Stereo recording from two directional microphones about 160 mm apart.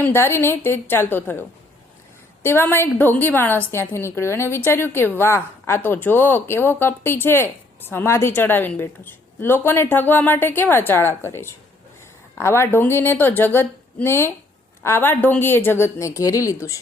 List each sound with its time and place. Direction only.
0.0 s a woman's voice: 15° left (ahead or behind)